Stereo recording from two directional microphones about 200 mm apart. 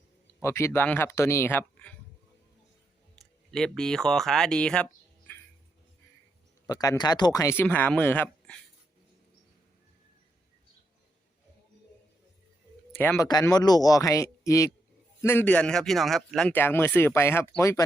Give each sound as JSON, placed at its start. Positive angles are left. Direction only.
{"t": 0.4, "sound": "a man's voice", "side_deg": 15}
{"t": 3.5, "sound": "speech", "side_deg": 5}
{"t": 6.7, "sound": "a man's voice", "side_deg": 20}
{"t": 13.0, "sound": "a man's voice", "side_deg": 10}